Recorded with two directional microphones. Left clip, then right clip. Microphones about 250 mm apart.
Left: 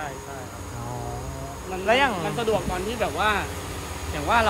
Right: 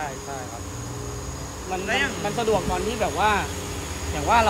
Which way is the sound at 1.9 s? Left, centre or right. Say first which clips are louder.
Left 4 dB; centre.